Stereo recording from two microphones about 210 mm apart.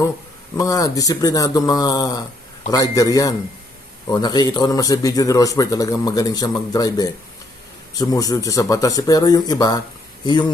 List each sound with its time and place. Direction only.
0.5 s a man's voice: 15° left (ahead or behind)